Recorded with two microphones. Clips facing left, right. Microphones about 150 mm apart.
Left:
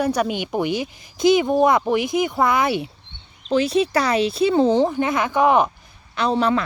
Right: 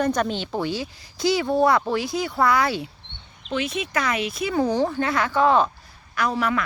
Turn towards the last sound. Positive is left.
turn(degrees=30)  # may be behind; listen again after turning